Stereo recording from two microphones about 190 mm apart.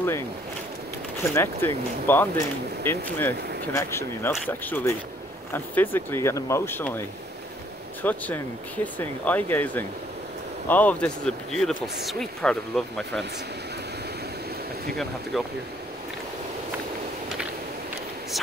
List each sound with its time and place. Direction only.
1.3 s speech: 10° left (ahead or behind)
15.3 s speech: centre (ahead or behind)